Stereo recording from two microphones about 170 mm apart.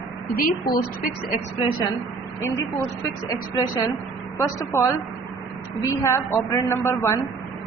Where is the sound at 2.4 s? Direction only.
20° left (ahead or behind).